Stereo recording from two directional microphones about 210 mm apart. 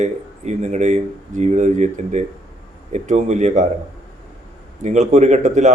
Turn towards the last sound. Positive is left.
turn(degrees=-35)  # may be behind; listen again after turning